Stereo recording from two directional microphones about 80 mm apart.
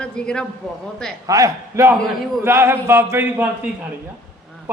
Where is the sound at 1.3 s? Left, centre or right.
Right.